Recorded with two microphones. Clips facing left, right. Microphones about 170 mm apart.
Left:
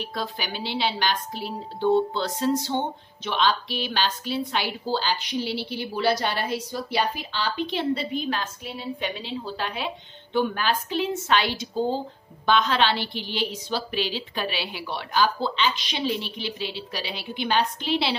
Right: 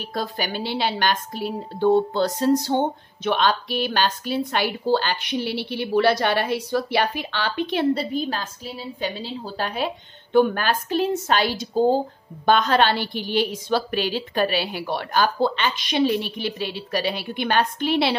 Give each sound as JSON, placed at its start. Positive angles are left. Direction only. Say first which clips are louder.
{"t": 0.0, "sound": "a woman's voice", "louder": "right 4 dB", "side_deg": -45}